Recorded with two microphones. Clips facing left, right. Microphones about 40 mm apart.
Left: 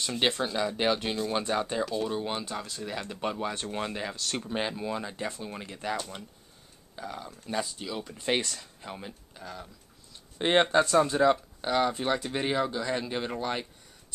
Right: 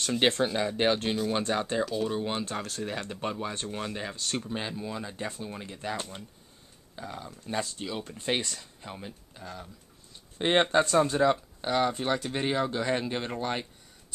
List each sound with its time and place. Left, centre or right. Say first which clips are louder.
0.3 s speech: right 2 dB; right
0.6 s speech: right 1 dB; centre
0.9 s speech: right 1 dB; centre
2.8 s speech: right 2 dB; centre
3.2 s speech: left 4 dB; centre
3.6 s speech: left 1 dB; centre
4.0 s speech: even; centre
4.4 s speech: left 2 dB; centre
5.2 s speech: left 1 dB; centre
7.0 s speech: left 1 dB; centre
12.7 s speech: right 2 dB; right
13.1 s speech: even; centre